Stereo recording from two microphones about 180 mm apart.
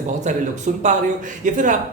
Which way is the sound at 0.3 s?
40° right (ahead or behind).